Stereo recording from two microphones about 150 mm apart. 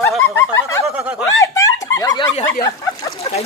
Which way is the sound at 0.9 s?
5° right (ahead or behind).